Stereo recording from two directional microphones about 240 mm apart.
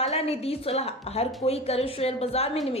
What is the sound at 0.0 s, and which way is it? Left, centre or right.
A woman's voice, left.